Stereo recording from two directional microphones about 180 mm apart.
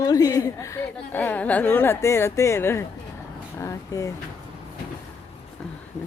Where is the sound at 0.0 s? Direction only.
20° left (ahead or behind).